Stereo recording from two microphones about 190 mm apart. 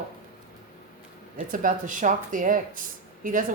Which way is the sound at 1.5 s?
45° right (ahead or behind).